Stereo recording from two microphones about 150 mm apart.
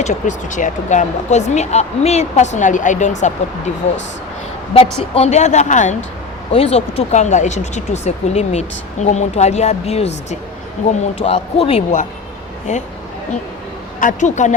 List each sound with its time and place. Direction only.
0.0 s speech: 55° left (ahead or behind)
4.7 s speech: 40° left (ahead or behind)
6.5 s speech: 45° left (ahead or behind)
14.0 s speech: 55° left (ahead or behind)